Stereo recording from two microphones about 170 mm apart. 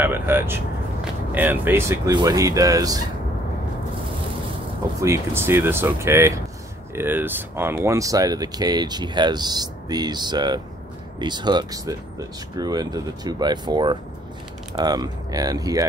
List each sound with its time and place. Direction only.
0.0 s speech: 10° right (ahead or behind)
5.0 s speech: 15° right (ahead or behind)